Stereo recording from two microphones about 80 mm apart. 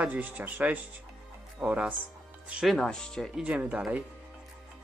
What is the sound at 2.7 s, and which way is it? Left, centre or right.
Speech, centre.